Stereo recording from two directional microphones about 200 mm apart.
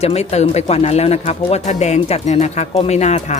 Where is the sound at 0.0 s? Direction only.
30° left (ahead or behind).